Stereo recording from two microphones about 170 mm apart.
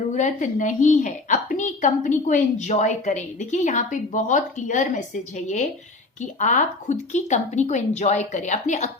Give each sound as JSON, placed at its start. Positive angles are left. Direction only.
{"t": 0.2, "sound": "a woman's voice", "side_deg": 45}